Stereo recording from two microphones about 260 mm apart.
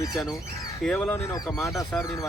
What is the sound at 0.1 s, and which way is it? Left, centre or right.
Speech, centre.